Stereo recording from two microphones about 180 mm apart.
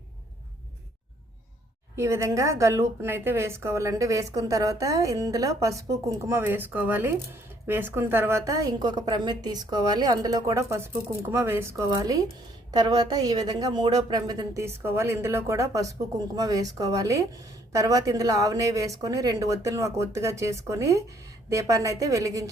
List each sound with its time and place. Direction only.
2.0 s a woman's voice: 15° right (ahead or behind)